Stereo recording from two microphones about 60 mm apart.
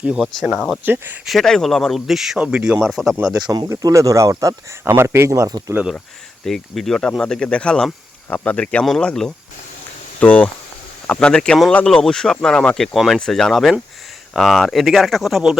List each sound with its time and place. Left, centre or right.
0.0 s speech: centre
0.8 s speech: right
1.2 s speech: centre
1.5 s speech: centre
2.0 s speech: centre
2.4 s speech: centre
2.9 s speech: centre
3.8 s speech: right
4.9 s speech: right
6.4 s speech: centre
11.3 s speech: centre